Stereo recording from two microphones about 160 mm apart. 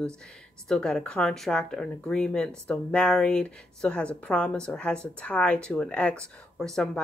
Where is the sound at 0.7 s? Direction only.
5° left (ahead or behind).